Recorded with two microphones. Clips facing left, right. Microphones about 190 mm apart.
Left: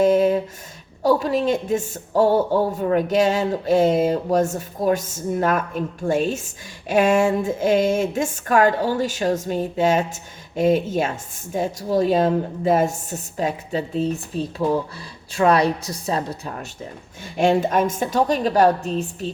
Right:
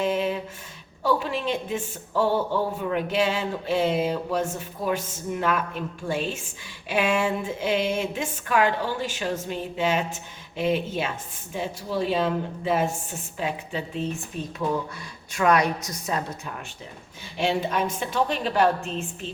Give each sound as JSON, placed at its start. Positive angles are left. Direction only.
{"t": 0.0, "sound": "a sound", "side_deg": 45}
{"t": 1.0, "sound": "a woman's voice", "side_deg": 40}
{"t": 17.3, "sound": "a woman's voice", "side_deg": 50}